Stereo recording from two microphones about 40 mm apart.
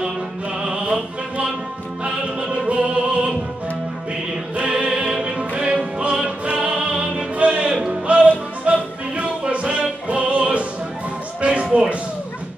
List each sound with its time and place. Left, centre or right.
0.6 s music: right
4.6 s music: right